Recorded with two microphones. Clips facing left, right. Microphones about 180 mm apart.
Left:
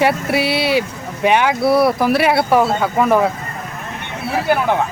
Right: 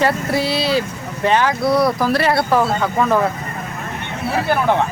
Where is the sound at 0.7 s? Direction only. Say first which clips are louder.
Left 1 dB; 15° left (ahead or behind).